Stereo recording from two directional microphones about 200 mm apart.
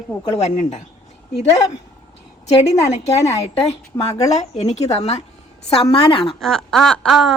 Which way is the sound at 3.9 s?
15° left (ahead or behind).